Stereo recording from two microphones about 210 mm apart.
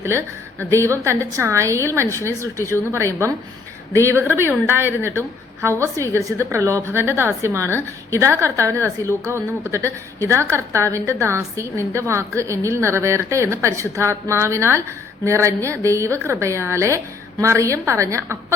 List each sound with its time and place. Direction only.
0.8 s a woman's voice: 15° right (ahead or behind)
6.1 s a woman's voice: 15° right (ahead or behind)